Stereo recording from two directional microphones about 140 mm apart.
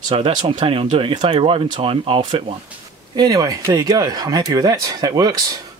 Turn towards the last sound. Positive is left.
turn(degrees=-25)  # may be behind; listen again after turning